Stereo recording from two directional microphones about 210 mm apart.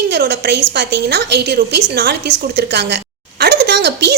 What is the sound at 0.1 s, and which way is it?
A woman's voice, 50° right (ahead or behind).